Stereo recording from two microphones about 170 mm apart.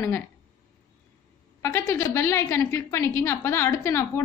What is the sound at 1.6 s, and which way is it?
A woman's voice, 15° left (ahead or behind).